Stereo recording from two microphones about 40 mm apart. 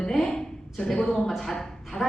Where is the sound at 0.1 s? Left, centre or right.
Centre.